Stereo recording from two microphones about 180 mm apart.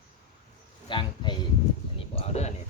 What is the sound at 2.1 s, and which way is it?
Speech, 35° left (ahead or behind).